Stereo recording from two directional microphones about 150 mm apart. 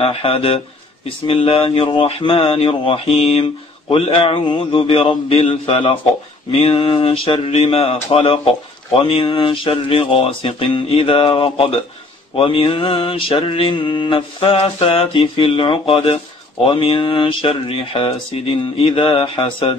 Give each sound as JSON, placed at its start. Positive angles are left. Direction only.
{"t": 0.0, "sound": "mantra", "side_deg": 40}